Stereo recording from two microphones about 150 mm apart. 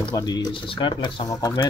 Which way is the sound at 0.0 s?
25° left (ahead or behind).